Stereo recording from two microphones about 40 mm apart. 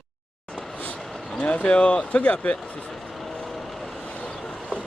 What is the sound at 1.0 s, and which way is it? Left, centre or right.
Vehicle, centre.